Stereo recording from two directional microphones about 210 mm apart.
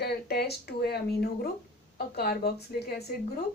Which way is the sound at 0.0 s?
50° left (ahead or behind).